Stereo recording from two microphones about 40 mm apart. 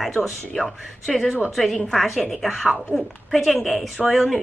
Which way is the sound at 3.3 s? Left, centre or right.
Centre.